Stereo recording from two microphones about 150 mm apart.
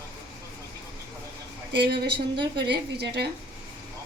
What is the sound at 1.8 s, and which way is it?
Speech, 90° right.